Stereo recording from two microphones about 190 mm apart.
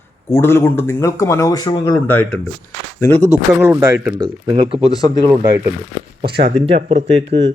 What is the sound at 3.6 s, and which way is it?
Speech, 10° right (ahead or behind).